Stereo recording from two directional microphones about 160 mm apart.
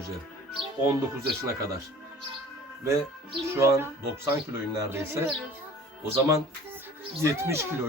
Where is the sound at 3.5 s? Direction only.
15° right (ahead or behind).